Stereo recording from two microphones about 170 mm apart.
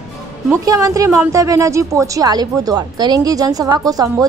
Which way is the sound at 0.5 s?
20° right (ahead or behind).